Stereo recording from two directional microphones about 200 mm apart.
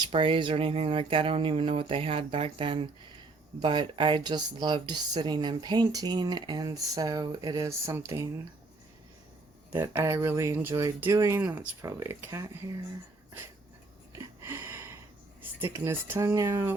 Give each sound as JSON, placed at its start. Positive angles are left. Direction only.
{"t": 0.0, "sound": "speech", "side_deg": -25}
{"t": 9.7, "sound": "speech", "side_deg": -15}
{"t": 14.4, "sound": "a sound", "side_deg": -10}
{"t": 15.4, "sound": "speech", "side_deg": -10}